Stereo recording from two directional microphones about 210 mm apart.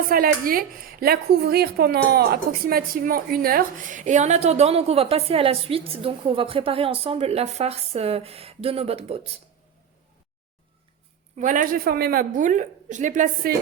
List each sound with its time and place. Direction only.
0.1 s a woman's voice: 45° right (ahead or behind)
11.3 s a woman's voice: 40° right (ahead or behind)